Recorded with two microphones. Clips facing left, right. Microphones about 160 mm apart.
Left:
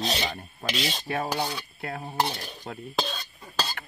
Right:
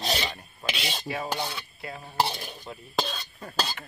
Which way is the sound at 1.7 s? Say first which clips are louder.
Left 4 dB; 60° left (ahead or behind).